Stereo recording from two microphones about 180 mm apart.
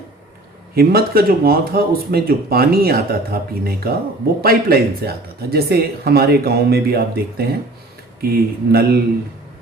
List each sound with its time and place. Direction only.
0.8 s speech: 55° right (ahead or behind)